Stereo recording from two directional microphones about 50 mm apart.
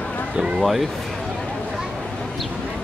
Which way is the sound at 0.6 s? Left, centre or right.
Centre.